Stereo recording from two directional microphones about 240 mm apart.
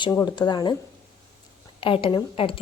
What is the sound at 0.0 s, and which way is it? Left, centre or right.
Speech, centre.